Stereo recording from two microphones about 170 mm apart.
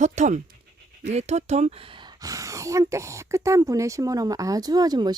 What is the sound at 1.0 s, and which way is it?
Speech, 40° right (ahead or behind).